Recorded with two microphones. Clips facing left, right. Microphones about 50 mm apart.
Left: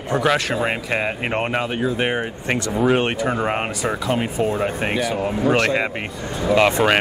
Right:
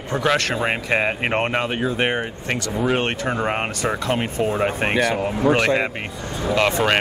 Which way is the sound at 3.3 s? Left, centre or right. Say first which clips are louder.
Left 1 dB; centre.